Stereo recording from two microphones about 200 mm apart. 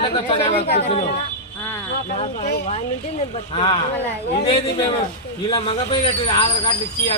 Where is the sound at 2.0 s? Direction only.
35° left (ahead or behind).